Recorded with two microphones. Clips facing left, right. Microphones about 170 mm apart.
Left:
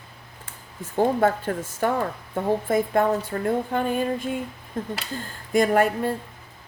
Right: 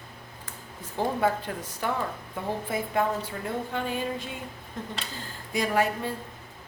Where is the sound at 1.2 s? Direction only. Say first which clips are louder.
Left 5 dB; 50° left (ahead or behind).